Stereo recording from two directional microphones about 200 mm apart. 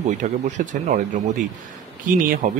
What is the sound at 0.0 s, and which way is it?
A man's voice, 35° right (ahead or behind).